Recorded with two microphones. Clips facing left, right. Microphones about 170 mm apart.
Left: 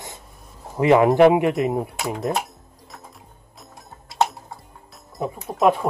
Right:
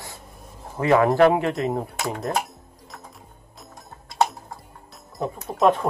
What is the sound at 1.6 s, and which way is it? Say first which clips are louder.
Speech: left 3 dB; centre (ahead or behind).